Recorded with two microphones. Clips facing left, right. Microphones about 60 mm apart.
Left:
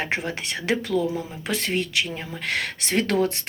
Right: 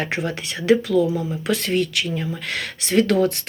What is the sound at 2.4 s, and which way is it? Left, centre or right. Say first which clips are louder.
Speech: even; left.